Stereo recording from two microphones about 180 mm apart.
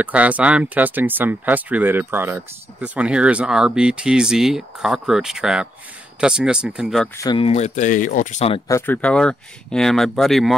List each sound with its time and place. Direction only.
0.0 s speech: 10° right (ahead or behind)
7.2 s speech: 20° left (ahead or behind)
7.4 s speech: 40° left (ahead or behind)
8.6 s speech: 15° left (ahead or behind)